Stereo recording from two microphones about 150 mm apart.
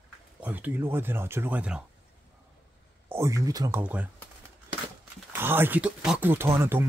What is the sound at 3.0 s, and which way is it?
Speech, 15° right (ahead or behind).